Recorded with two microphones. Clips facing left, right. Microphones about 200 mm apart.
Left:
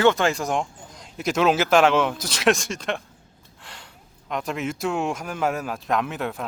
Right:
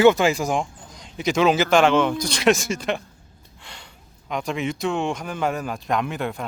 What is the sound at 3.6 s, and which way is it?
Gasp, centre (ahead or behind).